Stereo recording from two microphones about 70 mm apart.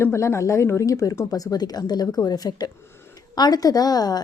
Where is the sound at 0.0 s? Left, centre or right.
Left.